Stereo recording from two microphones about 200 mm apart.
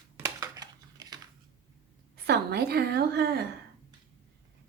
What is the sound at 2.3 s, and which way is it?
A woman's voice, 55° right (ahead or behind).